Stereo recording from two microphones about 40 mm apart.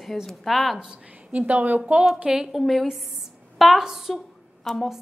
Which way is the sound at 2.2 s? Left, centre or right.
Centre.